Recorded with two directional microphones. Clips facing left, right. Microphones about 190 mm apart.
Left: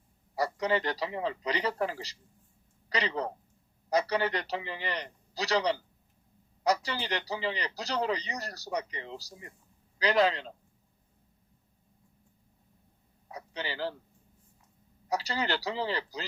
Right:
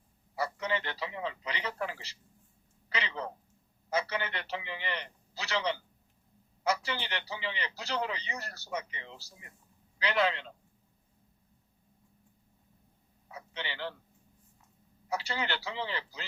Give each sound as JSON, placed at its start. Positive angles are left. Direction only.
{"t": 0.3, "sound": "a man's voice", "side_deg": 40}
{"t": 13.2, "sound": "a sound", "side_deg": 40}
{"t": 15.1, "sound": "a man's voice", "side_deg": 35}